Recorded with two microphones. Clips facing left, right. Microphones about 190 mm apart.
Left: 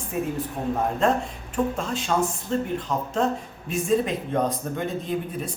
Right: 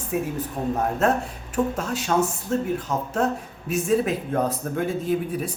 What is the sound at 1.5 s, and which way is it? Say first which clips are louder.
Speech: right 1 dB; 5° right (ahead or behind).